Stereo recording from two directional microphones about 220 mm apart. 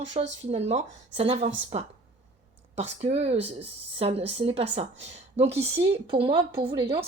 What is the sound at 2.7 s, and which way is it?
Speech, 30° right (ahead or behind).